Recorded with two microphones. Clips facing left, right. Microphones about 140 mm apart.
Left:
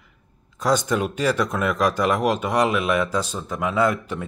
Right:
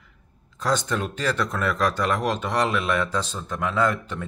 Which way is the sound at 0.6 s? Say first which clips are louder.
Left 4 dB; 10° left (ahead or behind).